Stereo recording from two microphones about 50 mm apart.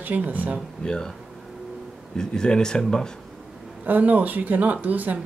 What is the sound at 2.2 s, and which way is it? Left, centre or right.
Speech, centre.